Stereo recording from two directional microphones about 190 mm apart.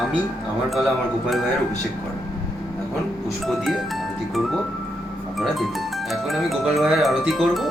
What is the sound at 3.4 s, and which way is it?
Speech, centre (ahead or behind).